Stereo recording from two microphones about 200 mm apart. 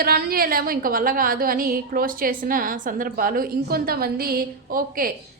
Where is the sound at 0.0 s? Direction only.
50° right (ahead or behind).